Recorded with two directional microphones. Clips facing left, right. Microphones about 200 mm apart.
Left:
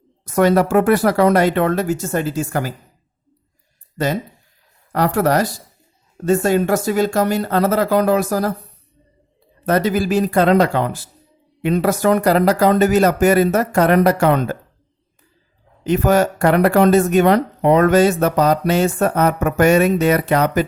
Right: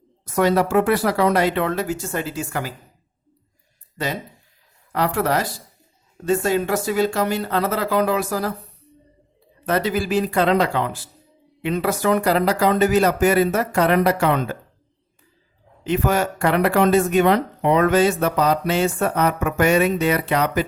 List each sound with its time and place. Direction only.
0.3 s speech: 50° left (ahead or behind)
3.9 s speech: 45° left (ahead or behind)
9.6 s speech: 45° left (ahead or behind)
15.8 s speech: 40° left (ahead or behind)